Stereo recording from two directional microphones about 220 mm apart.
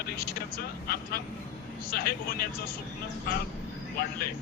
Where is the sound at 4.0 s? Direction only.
45° left (ahead or behind).